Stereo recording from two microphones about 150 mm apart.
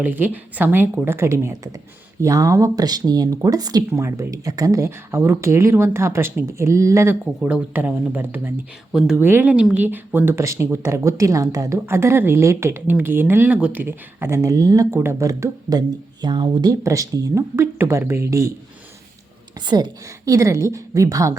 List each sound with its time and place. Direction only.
0.0 s speech: 10° right (ahead or behind)
9.1 s speech: 15° right (ahead or behind)
19.6 s speech: 30° right (ahead or behind)